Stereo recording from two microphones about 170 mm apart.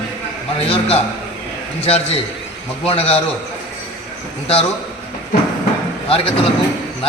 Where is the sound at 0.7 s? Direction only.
35° left (ahead or behind).